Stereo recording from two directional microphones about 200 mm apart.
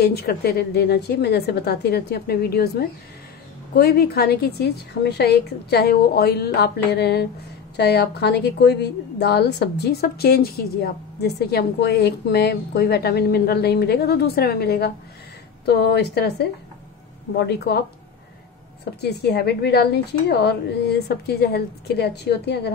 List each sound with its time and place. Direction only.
0.0 s a woman's voice: 50° left (ahead or behind)
17.5 s a woman's voice: 55° left (ahead or behind)
18.9 s a woman's voice: 55° left (ahead or behind)